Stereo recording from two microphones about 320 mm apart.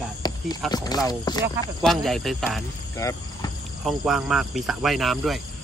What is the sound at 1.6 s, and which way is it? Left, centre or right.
Speech, centre.